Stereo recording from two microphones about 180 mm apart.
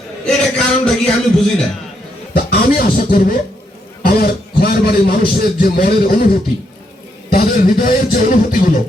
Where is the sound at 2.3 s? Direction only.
55° left (ahead or behind).